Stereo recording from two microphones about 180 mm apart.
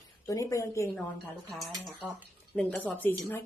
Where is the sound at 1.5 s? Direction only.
Centre (ahead or behind).